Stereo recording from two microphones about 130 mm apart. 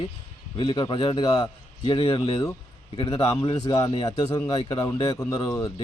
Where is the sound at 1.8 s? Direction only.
40° left (ahead or behind).